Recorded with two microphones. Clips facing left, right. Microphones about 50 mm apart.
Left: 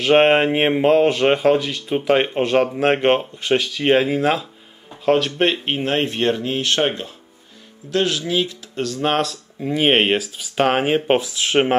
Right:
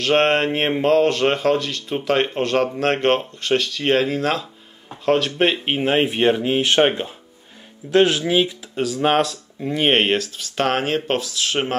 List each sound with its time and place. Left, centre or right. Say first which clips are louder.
0.0 s speech: left 3 dB; centre; by 8.5 s right
8.7 s speech: right 2 dB; centre; by 11.7 s left